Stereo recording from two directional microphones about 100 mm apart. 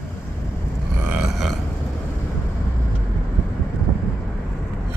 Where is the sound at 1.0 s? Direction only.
10° right (ahead or behind).